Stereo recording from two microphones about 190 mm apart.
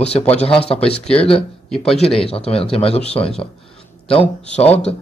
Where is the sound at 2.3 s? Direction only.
30° left (ahead or behind).